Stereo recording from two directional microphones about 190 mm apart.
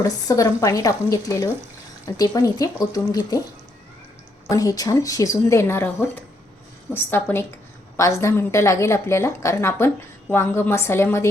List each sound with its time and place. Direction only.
0.0 s a woman's voice: 15° left (ahead or behind)
4.4 s a woman's voice: 20° left (ahead or behind)